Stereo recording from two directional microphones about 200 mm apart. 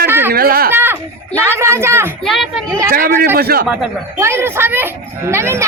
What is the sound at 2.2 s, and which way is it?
Speech, centre (ahead or behind).